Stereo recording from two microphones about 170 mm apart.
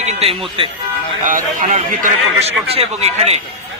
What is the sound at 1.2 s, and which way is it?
A man's voice, 50° right (ahead or behind).